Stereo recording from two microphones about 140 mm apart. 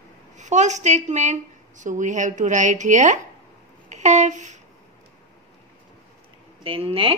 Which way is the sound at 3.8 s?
60° right (ahead or behind).